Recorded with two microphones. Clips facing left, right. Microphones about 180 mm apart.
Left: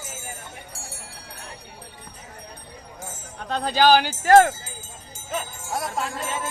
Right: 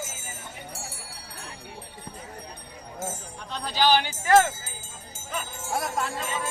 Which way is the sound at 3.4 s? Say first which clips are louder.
Left 5 dB; 50° left (ahead or behind).